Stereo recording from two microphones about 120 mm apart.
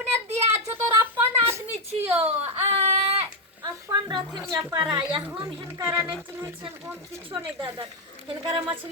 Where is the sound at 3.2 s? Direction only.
35° right (ahead or behind).